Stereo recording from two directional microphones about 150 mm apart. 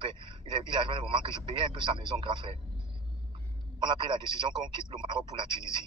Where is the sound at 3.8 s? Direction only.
35° right (ahead or behind).